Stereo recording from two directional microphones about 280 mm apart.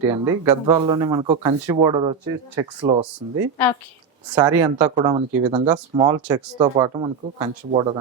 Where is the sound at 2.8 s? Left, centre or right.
Centre.